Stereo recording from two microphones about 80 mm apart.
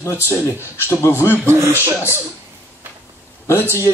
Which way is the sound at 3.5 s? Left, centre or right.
Left.